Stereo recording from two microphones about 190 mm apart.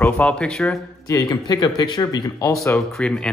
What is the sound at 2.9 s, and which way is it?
Speech, 5° left (ahead or behind).